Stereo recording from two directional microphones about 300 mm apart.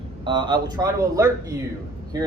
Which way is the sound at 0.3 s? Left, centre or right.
Centre.